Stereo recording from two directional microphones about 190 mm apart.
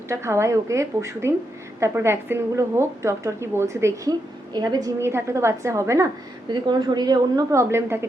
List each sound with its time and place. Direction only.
0.1 s a woman's voice: 15° right (ahead or behind)